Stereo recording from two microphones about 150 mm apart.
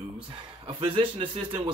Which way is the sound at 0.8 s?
35° right (ahead or behind).